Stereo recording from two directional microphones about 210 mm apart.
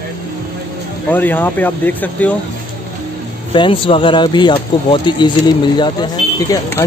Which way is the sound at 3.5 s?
25° left (ahead or behind).